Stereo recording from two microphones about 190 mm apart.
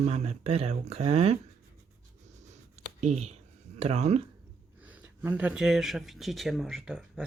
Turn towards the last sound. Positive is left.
turn(degrees=0)  # may be behind; listen again after turning